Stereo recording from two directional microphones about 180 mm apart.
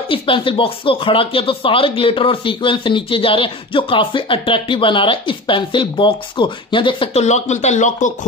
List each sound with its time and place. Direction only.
0.1 s speech: 30° left (ahead or behind)